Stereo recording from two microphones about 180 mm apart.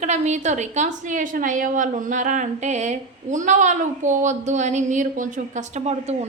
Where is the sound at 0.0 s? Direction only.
40° right (ahead or behind).